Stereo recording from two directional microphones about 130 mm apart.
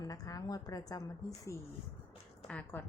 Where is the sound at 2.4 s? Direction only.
10° left (ahead or behind).